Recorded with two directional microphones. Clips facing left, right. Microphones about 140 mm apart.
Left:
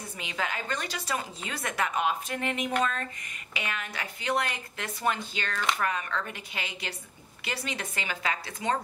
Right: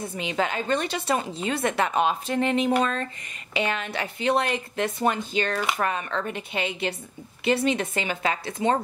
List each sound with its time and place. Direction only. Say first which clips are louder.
0.0 s a woman's voice: right 8 dB; 25° right (ahead or behind)